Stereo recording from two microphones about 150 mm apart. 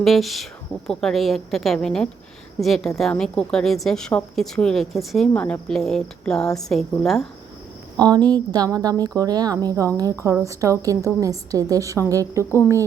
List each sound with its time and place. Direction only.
0.0 s a woman's voice: centre (ahead or behind)
7.9 s speech: 25° right (ahead or behind)